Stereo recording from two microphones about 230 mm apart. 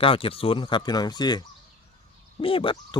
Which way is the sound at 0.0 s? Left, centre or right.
Left.